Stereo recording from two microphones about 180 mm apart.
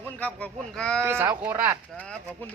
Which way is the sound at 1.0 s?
10° right (ahead or behind).